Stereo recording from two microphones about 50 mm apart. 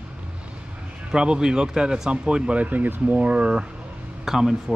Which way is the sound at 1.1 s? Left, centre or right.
Centre.